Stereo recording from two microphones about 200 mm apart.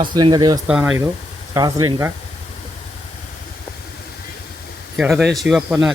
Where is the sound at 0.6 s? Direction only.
5° right (ahead or behind).